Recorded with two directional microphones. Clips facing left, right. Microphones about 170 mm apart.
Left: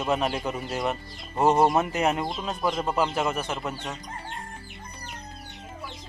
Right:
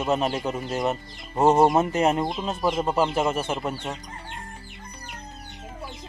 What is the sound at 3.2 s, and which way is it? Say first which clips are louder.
Speech: right 3 dB; 25° right (ahead or behind).